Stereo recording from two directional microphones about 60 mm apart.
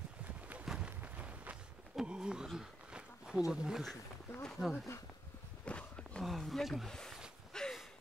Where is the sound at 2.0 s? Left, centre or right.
Centre.